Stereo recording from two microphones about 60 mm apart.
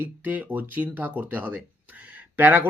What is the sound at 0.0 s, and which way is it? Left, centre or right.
Speech, right.